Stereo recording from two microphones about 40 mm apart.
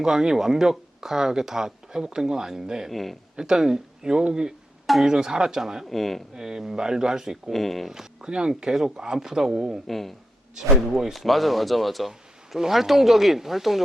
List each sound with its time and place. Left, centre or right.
0.0 s speech: centre
2.9 s speech: centre
3.3 s speech: centre
5.9 s speech: centre
6.3 s speech: centre
7.5 s speech: centre
8.2 s speech: centre
9.8 s speech: centre
11.1 s speech: centre